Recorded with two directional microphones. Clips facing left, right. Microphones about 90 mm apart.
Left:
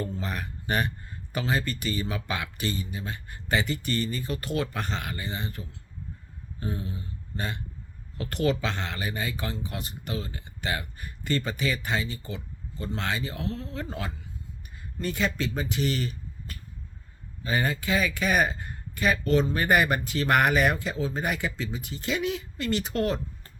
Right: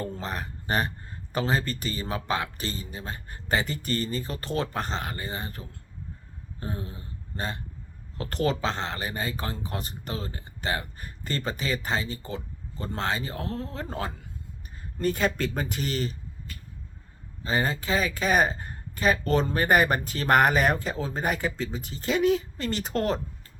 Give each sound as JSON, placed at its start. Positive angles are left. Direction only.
{"t": 0.0, "sound": "speech", "side_deg": -35}
{"t": 6.6, "sound": "a sound", "side_deg": -35}
{"t": 8.2, "sound": "speech", "side_deg": -35}
{"t": 17.4, "sound": "speech", "side_deg": -30}